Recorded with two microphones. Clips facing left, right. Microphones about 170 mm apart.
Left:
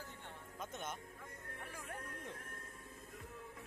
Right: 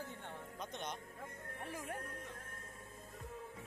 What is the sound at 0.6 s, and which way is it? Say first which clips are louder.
Speech: even; 5° left (ahead or behind).